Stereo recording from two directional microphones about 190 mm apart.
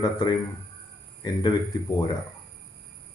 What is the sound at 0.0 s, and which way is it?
Speech, 20° left (ahead or behind).